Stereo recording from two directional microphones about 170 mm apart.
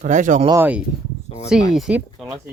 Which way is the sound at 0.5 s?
10° right (ahead or behind).